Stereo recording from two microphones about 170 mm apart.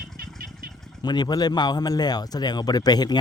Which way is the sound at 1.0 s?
25° left (ahead or behind).